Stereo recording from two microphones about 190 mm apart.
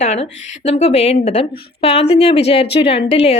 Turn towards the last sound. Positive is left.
turn(degrees=30)  # may be behind; listen again after turning